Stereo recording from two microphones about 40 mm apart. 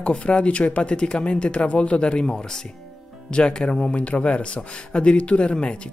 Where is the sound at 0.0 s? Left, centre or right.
Left.